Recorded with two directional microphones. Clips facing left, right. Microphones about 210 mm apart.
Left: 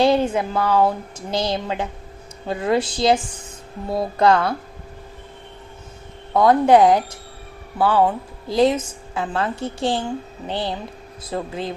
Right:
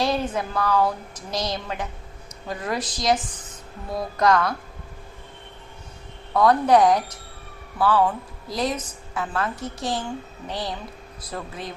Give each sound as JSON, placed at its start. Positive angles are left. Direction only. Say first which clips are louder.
{"t": 0.0, "sound": "a woman's voice", "louder": "left 7 dB", "side_deg": 30}
{"t": 6.3, "sound": "a woman's voice", "louder": "left 3 dB", "side_deg": 25}